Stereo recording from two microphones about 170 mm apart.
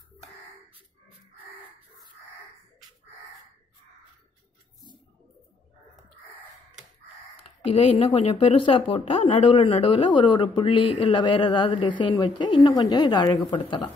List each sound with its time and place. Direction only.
7.4 s speech: 35° left (ahead or behind)